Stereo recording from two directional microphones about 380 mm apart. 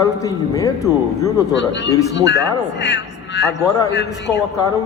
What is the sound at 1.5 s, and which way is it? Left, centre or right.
A man's voice, left.